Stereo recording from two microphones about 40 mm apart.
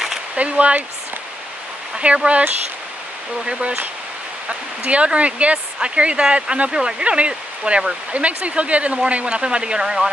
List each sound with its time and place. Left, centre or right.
0.4 s speech: right
2.0 s speech: right
4.5 s speech: right